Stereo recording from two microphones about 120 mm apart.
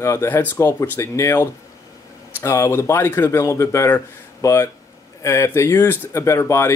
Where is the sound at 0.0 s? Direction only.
25° left (ahead or behind).